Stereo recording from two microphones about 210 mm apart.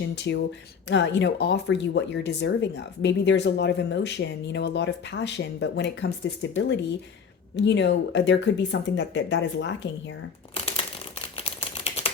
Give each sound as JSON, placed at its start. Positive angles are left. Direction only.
{"t": 0.2, "sound": "speech", "side_deg": 55}
{"t": 11.3, "sound": "typewriter", "side_deg": 30}